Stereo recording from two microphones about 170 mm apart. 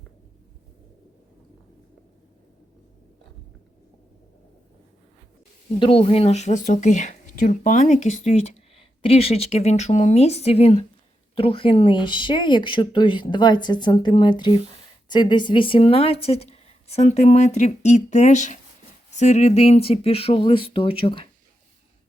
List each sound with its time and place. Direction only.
5.8 s speech: 35° left (ahead or behind)